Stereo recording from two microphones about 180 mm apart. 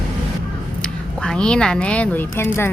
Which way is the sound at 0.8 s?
5° left (ahead or behind).